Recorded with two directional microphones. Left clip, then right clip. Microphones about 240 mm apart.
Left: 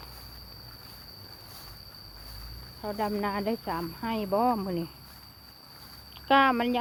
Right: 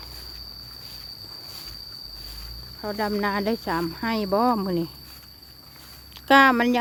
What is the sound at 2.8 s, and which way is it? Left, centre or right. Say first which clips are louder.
Speech: right 4 dB; right.